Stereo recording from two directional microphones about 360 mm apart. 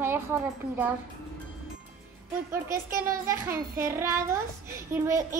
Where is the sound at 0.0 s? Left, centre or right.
Centre.